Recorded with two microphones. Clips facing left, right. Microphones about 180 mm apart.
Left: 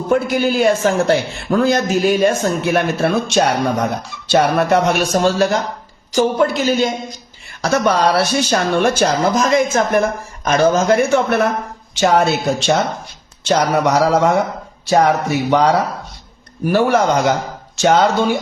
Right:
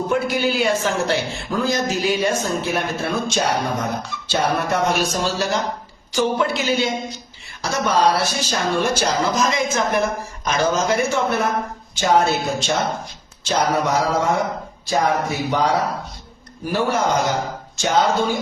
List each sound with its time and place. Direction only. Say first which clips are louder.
0.1 s speech: left 7 dB; 45° left (ahead or behind)
6.1 s speech: left 5 dB; 45° left (ahead or behind)
7.6 s speech: left 4 dB; 65° left (ahead or behind)
11.9 s a sound: left 3 dB; 75° left (ahead or behind)